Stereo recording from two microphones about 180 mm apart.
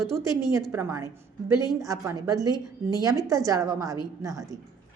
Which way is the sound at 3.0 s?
20° right (ahead or behind).